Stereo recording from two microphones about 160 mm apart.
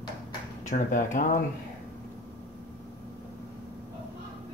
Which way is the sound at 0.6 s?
55° left (ahead or behind).